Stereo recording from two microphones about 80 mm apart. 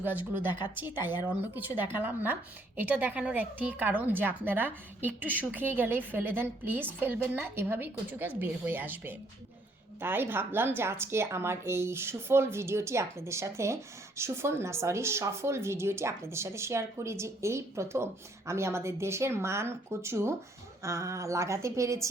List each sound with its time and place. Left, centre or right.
0.0 s speech: right